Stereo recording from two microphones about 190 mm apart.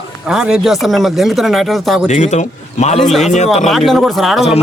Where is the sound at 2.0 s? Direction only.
40° left (ahead or behind).